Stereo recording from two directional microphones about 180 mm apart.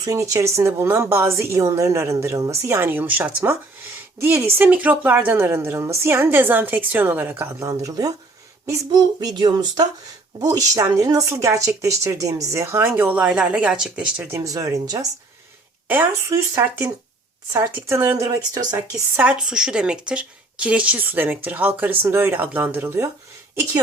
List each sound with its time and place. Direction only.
0.0 s speech: 20° right (ahead or behind)
19.2 s speech: 5° right (ahead or behind)